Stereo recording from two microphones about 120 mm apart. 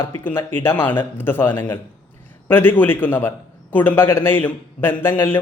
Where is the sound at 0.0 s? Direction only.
20° left (ahead or behind).